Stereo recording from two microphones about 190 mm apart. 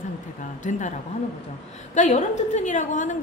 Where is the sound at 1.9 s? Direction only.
40° left (ahead or behind).